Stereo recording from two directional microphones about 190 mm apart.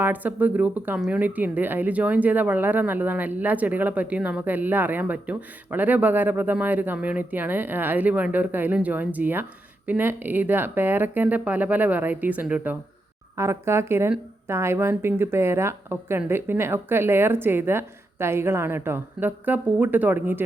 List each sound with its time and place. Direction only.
0.0 s speech: 10° right (ahead or behind)